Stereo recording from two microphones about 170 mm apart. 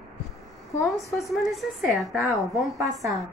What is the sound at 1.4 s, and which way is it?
Speech, centre (ahead or behind).